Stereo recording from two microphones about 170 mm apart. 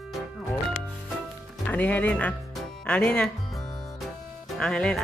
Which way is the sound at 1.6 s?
10° left (ahead or behind).